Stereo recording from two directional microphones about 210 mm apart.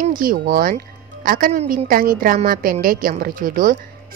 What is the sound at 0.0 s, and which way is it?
A woman's voice, 40° right (ahead or behind).